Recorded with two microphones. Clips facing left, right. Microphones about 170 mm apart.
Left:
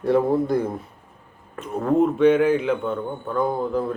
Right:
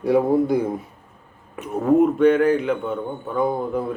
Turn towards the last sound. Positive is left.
turn(degrees=0)  # may be behind; listen again after turning